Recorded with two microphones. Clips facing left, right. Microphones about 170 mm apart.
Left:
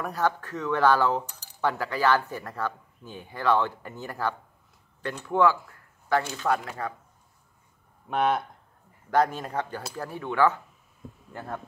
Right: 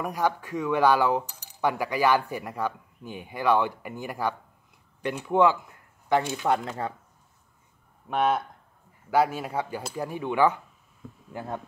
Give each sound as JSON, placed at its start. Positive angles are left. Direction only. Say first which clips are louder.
{"t": 0.0, "sound": "speech", "louder": "even", "side_deg": -15}
{"t": 8.1, "sound": "speech", "louder": "even", "side_deg": 0}